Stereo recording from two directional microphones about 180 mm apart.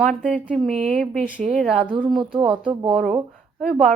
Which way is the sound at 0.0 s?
Centre (ahead or behind).